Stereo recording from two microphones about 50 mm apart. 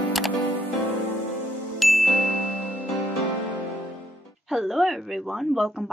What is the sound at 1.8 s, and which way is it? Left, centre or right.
Ding, centre.